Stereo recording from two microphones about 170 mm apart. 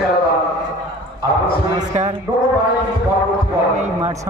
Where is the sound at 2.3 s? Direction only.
25° right (ahead or behind).